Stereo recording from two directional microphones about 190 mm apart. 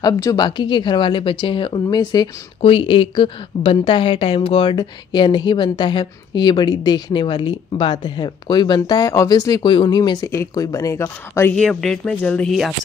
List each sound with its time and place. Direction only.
0.0 s speech: 20° left (ahead or behind); by 12.7 s centre (ahead or behind)